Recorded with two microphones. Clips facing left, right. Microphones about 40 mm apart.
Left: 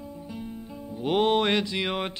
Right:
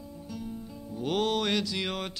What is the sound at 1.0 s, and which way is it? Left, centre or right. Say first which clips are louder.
Music: left 5 dB; left.